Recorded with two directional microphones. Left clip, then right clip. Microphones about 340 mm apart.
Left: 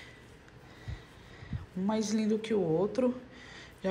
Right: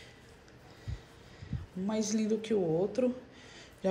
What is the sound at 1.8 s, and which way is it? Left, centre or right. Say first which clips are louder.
A woman's voice: left 1 dB; centre.